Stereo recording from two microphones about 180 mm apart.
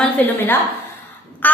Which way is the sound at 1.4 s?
10° left (ahead or behind).